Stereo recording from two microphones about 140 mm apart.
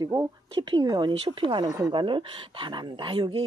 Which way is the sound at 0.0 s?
25° right (ahead or behind).